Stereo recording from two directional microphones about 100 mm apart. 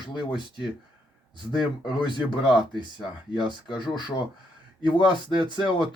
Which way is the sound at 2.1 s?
50° left (ahead or behind).